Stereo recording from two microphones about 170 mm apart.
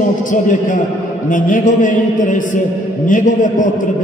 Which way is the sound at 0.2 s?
50° left (ahead or behind).